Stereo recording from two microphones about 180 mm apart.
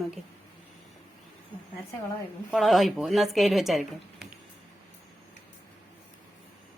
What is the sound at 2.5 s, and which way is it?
A woman's voice, centre (ahead or behind).